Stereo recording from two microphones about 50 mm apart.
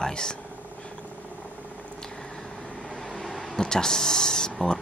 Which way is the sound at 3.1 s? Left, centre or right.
Centre.